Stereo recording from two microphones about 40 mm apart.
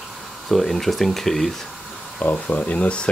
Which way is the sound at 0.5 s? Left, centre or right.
Centre.